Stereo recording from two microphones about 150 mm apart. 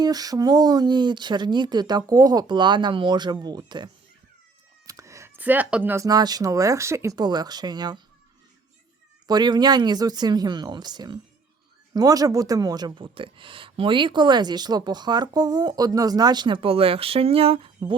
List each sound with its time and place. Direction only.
0.0 s speech: 25° right (ahead or behind)
4.9 s a sound: 20° right (ahead or behind)
6.1 s speech: 25° right (ahead or behind)
9.2 s speech: 30° right (ahead or behind)